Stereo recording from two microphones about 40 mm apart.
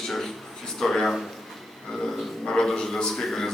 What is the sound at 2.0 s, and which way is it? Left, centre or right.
Speech, centre.